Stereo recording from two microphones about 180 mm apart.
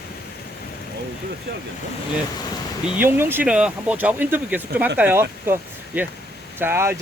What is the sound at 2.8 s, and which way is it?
Speech, 10° right (ahead or behind).